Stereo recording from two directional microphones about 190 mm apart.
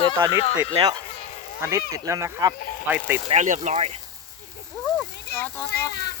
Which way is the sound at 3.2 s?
40° right (ahead or behind).